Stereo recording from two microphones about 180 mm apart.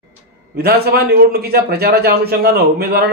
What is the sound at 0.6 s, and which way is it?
A man's voice, 60° right (ahead or behind).